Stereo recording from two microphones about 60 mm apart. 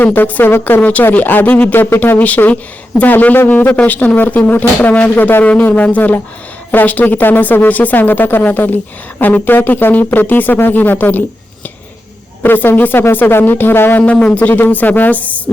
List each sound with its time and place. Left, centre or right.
0.0 s speech: left
0.8 s speech: left
12.4 s speech: left
14.0 s speech: left